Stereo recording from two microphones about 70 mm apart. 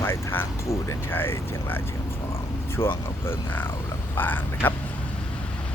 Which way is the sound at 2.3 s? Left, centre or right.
Left.